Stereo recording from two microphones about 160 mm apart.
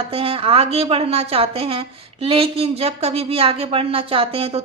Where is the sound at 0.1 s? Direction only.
35° right (ahead or behind).